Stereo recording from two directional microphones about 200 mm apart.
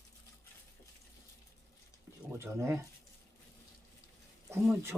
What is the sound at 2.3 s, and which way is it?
Speech, 10° right (ahead or behind).